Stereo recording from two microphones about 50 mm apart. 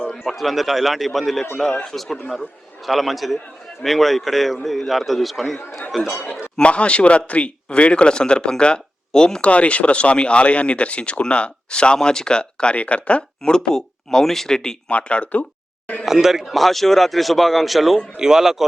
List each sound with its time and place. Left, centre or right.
0.1 s a man's voice: centre
6.6 s speech: left
9.5 s speech: left
14.8 s speech: left
16.0 s a man's voice: centre